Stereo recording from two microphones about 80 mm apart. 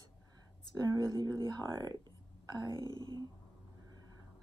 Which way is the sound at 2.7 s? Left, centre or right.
Left.